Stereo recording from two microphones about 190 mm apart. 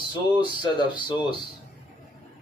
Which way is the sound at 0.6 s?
25° left (ahead or behind).